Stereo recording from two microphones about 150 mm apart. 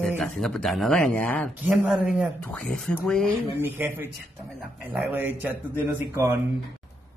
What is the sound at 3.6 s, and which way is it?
Speech, 15° right (ahead or behind).